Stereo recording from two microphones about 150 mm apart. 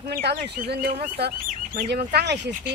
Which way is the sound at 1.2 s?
80° right.